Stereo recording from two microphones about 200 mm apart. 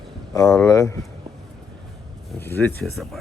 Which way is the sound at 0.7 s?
15° left (ahead or behind).